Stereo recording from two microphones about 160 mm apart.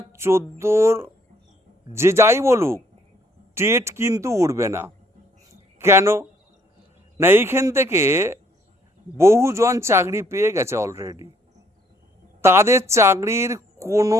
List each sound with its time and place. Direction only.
0.1 s speech: 15° right (ahead or behind)
12.4 s speech: 15° right (ahead or behind)